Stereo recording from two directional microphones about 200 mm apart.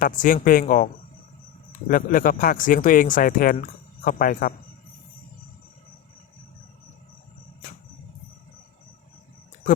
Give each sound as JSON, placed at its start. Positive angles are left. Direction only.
{"t": 0.0, "sound": "speech", "side_deg": 40}
{"t": 1.9, "sound": "speech", "side_deg": 45}